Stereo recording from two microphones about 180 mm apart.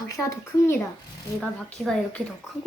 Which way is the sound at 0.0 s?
15° left (ahead or behind).